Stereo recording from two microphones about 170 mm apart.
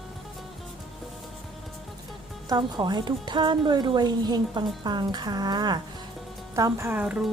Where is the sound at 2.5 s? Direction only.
25° right (ahead or behind).